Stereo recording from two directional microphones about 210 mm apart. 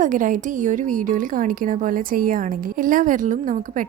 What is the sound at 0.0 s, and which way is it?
A woman's voice, 40° right (ahead or behind).